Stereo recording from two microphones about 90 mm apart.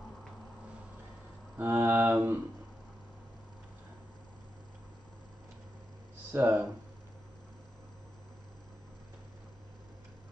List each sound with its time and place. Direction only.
1.6 s speech: 25° right (ahead or behind)
6.3 s speech: 25° right (ahead or behind)